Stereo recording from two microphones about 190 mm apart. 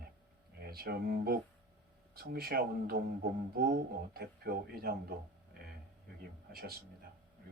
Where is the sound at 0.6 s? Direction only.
55° right (ahead or behind).